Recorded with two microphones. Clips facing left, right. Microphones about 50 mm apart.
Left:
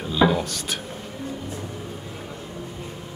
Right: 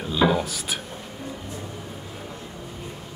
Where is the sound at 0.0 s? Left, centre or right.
Centre.